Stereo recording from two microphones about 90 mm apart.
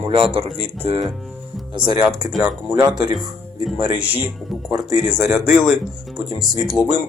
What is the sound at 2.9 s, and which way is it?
Speech, 50° right (ahead or behind).